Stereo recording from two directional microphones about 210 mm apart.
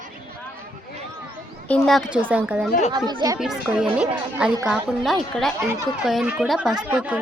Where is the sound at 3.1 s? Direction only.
20° right (ahead or behind).